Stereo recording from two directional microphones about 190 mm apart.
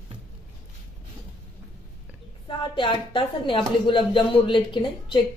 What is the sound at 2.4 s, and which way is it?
A woman's voice, 25° left (ahead or behind).